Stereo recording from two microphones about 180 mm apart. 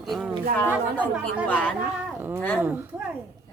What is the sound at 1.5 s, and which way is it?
A woman's voice, 5° left (ahead or behind).